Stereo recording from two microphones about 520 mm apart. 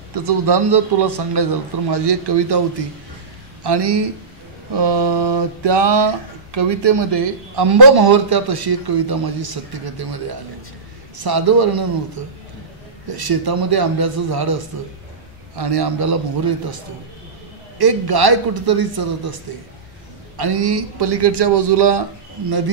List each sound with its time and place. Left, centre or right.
0.5 s a man's voice: right
3.6 s a man's voice: right
11.2 s a man's voice: right
13.1 s a man's voice: right
20.3 s a man's voice: right